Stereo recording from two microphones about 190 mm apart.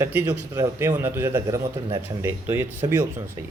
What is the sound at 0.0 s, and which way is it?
Speech, 10° right (ahead or behind).